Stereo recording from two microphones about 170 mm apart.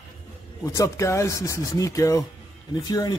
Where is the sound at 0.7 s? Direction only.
15° left (ahead or behind).